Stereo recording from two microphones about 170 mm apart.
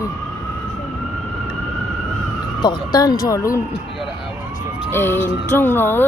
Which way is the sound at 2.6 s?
25° left (ahead or behind).